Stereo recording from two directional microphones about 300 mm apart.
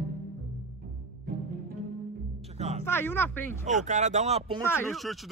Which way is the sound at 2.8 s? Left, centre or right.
Centre.